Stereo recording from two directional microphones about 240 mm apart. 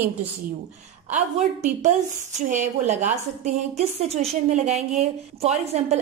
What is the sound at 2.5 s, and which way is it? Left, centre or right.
A woman's voice, right.